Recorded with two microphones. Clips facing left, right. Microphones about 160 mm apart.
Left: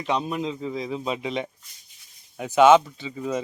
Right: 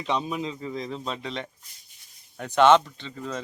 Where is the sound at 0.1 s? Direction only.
Centre (ahead or behind).